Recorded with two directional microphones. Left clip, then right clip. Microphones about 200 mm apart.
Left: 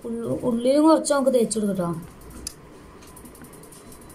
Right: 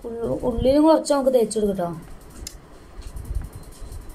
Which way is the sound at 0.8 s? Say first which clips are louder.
Even; 20° right (ahead or behind).